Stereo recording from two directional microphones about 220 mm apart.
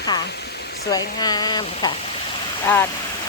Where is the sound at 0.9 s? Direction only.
15° left (ahead or behind).